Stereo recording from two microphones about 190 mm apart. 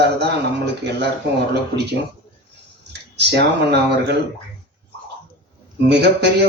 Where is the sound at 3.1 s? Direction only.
65° right (ahead or behind).